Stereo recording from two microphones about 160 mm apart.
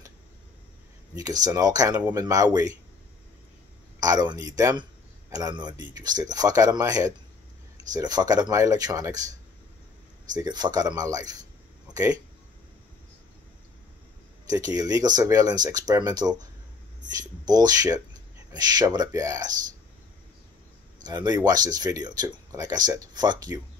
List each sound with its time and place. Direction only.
1.1 s speech: 25° right (ahead or behind)
4.0 s speech: 25° right (ahead or behind)
10.3 s speech: 25° right (ahead or behind)
14.5 s speech: 25° right (ahead or behind)
17.5 s speech: 25° right (ahead or behind)
21.0 s speech: 25° right (ahead or behind)